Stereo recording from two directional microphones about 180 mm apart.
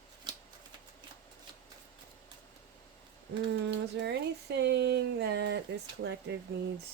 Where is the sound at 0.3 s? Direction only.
25° right (ahead or behind).